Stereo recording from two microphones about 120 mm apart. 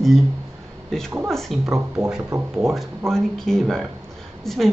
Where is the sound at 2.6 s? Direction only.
Centre (ahead or behind).